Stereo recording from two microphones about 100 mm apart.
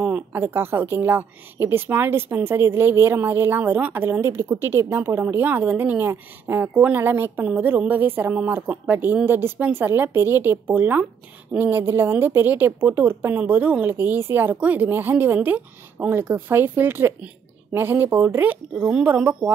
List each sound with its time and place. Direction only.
0.0 s a woman's voice: 20° right (ahead or behind)